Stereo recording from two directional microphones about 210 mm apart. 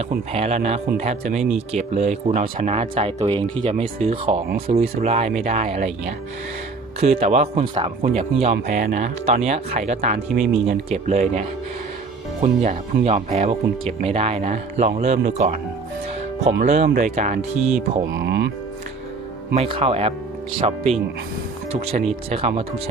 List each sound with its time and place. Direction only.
0.3 s speech: 30° right (ahead or behind)
16.6 s speech: 35° right (ahead or behind)
17.6 s speech: 5° right (ahead or behind)
18.2 s speech: 55° right (ahead or behind)
19.5 s speech: 25° right (ahead or behind)